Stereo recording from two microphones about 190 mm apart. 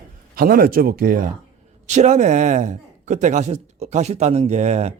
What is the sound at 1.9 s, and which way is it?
Speech, 40° right (ahead or behind).